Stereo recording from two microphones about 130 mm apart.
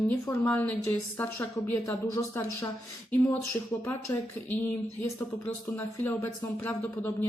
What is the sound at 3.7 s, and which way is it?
Speech, 20° left (ahead or behind).